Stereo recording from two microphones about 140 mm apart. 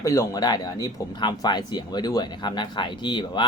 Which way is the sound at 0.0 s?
25° left (ahead or behind).